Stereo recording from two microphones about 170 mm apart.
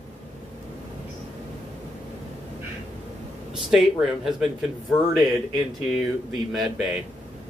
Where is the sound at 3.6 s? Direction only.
Centre (ahead or behind).